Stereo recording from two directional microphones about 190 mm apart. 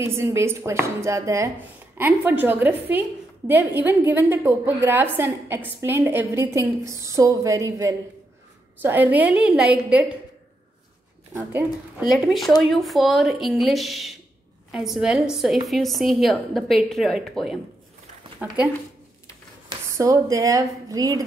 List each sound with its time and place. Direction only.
0.0 s a woman's voice: 15° right (ahead or behind)
12.1 s a woman's voice: centre (ahead or behind)
18.4 s a woman's voice: 10° right (ahead or behind)
19.9 s a woman's voice: 15° right (ahead or behind)